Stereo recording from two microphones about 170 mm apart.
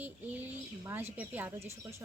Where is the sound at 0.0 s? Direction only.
10° right (ahead or behind).